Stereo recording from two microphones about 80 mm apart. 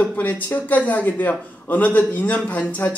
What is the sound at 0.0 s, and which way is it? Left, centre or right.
Speech, left.